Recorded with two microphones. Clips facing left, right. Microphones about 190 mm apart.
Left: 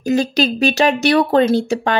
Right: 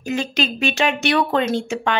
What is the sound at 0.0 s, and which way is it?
A woman's voice, 40° left (ahead or behind).